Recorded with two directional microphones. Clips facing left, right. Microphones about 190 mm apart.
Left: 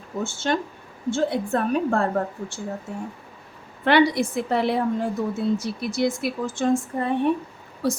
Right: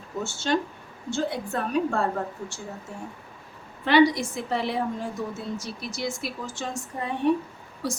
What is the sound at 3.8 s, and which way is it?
A woman's voice, 60° left (ahead or behind).